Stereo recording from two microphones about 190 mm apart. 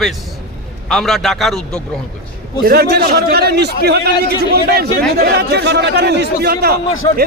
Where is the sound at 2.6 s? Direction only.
55° right (ahead or behind).